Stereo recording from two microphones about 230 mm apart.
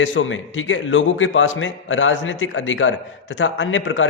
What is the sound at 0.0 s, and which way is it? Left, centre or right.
A man's voice, left.